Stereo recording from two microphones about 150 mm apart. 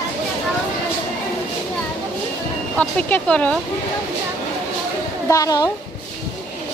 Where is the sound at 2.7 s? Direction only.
10° left (ahead or behind).